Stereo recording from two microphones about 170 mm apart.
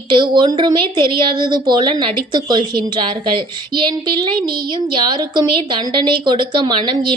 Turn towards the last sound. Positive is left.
turn(degrees=-30)  # may be behind; listen again after turning